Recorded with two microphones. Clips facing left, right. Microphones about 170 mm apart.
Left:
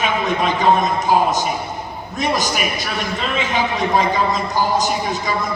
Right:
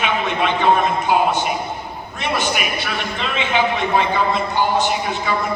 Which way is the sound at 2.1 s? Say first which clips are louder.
Left 2 dB; 40° left (ahead or behind).